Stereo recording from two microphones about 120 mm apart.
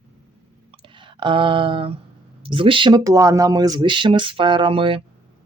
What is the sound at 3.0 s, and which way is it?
Speech, 30° right (ahead or behind).